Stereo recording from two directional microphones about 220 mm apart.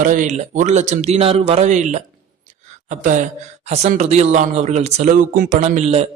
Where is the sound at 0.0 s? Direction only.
35° right (ahead or behind).